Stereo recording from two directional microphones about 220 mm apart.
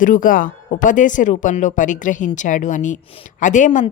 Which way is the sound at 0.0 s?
35° left (ahead or behind).